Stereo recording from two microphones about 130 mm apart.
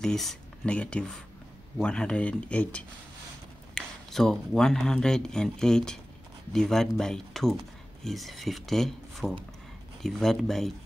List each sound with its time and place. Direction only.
0.0 s speech: 5° left (ahead or behind)